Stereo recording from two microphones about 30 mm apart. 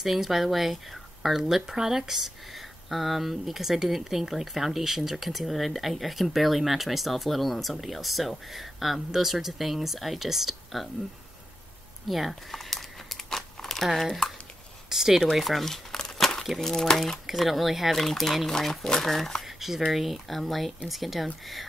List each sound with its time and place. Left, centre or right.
0.0 s a woman's voice: centre
1.7 s speech: centre
2.5 s a woman's voice: centre
12.1 s a woman's voice: centre
12.4 s crumpling: centre
13.9 s a woman's voice: centre
14.9 s a woman's voice: centre
15.6 s speech: centre
16.2 s a sound: centre
16.6 s speech: centre
17.3 s a woman's voice: centre
17.9 s speech: centre
19.4 s a woman's voice: centre